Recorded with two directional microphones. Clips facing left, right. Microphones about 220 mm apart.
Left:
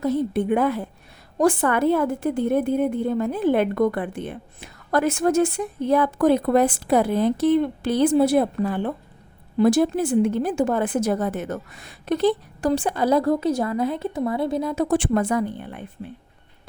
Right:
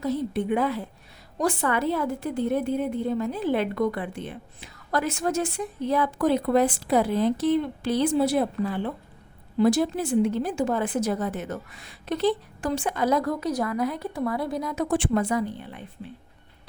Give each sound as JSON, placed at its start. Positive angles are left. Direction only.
{"t": 0.0, "sound": "a woman's voice", "side_deg": 50}
{"t": 14.9, "sound": "a woman's voice", "side_deg": 45}